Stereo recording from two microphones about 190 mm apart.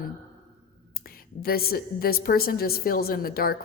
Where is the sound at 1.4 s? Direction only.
55° left (ahead or behind).